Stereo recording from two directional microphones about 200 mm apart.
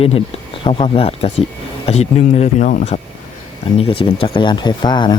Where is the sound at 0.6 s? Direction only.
25° left (ahead or behind).